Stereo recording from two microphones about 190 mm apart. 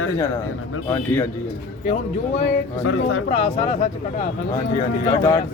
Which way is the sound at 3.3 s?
35° left (ahead or behind).